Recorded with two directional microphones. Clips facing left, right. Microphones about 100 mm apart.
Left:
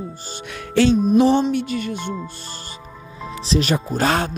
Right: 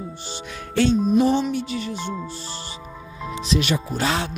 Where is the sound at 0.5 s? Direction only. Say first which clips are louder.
Left 3 dB; 75° left (ahead or behind).